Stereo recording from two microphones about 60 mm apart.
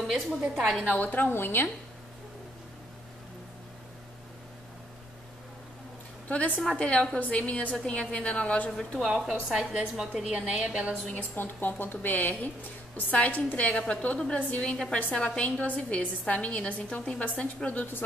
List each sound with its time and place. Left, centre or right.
0.7 s a woman's voice: left
1.3 s speech: left
6.2 s a woman's voice: left
8.7 s speech: centre
9.1 s a woman's voice: centre
10.2 s a woman's voice: centre
11.1 s a woman's voice: left